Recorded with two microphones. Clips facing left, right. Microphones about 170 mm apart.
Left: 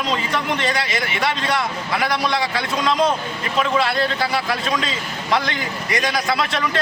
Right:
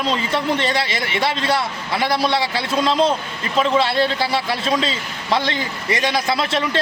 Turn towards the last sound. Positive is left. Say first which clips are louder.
# right 1 dB
turn(degrees=-30)  # may be behind; listen again after turning